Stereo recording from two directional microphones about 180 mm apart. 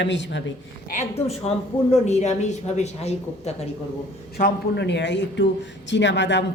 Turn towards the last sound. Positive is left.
turn(degrees=85)